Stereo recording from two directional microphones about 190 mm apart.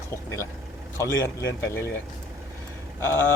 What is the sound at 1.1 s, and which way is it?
Speech, 75° left (ahead or behind).